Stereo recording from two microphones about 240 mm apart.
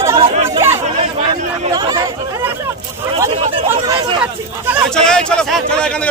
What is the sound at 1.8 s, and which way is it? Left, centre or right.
Chatter, centre.